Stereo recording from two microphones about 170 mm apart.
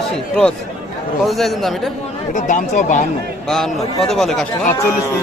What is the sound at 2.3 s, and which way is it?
Speech, 45° left (ahead or behind).